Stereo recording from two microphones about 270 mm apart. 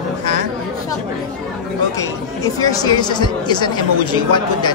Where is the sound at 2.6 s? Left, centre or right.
Centre.